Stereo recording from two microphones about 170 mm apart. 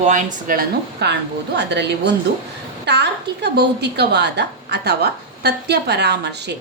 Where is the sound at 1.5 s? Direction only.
90° right.